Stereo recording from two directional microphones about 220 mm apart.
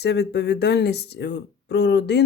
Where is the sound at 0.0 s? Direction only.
50° left (ahead or behind).